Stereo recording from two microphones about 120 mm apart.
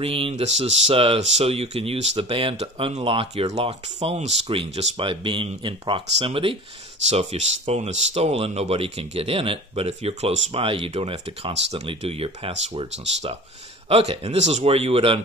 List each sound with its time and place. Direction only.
0.0 s speech: 50° right (ahead or behind)
7.1 s speech: 65° right (ahead or behind)